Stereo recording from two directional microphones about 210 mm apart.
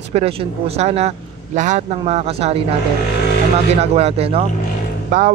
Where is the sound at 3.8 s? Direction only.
30° right (ahead or behind).